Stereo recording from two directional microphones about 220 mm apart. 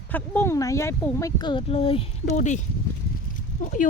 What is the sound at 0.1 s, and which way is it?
Speech, 10° left (ahead or behind).